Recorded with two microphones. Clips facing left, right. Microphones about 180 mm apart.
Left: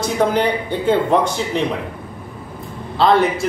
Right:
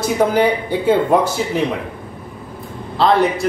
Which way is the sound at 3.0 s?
Centre (ahead or behind).